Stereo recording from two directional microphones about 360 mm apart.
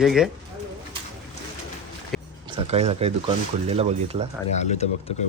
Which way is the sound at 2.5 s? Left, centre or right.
Centre.